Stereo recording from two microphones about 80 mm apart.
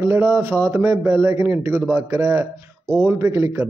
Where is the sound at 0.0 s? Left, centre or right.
Right.